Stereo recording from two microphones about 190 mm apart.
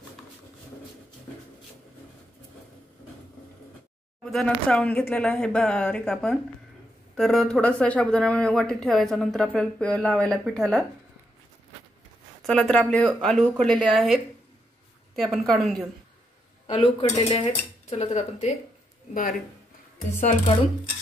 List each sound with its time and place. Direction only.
4.2 s speech: centre (ahead or behind)
12.4 s speech: 5° left (ahead or behind)
16.6 s speech: 30° left (ahead or behind)
20.2 s speech: 35° left (ahead or behind)